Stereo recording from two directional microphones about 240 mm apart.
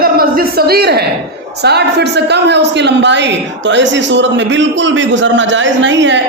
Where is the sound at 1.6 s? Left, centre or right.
Right.